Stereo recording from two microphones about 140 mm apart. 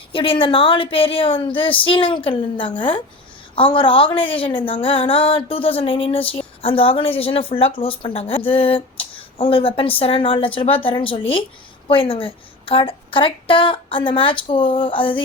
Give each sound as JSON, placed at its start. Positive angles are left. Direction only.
{"t": 0.1, "sound": "speech", "side_deg": 40}